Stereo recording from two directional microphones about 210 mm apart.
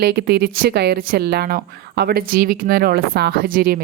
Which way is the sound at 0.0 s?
50° right (ahead or behind).